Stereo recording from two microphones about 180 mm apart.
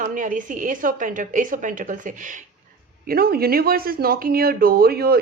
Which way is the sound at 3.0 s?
55° right (ahead or behind).